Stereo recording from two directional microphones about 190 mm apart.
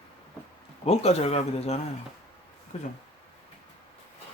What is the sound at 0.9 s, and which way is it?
Speech, 35° left (ahead or behind).